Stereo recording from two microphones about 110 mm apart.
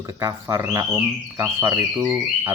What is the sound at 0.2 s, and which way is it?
Speech, 30° right (ahead or behind).